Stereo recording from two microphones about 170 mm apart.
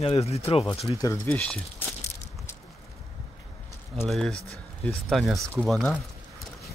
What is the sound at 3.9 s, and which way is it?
Speech, centre (ahead or behind).